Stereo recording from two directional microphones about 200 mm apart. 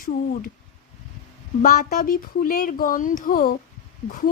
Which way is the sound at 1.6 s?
45° left (ahead or behind).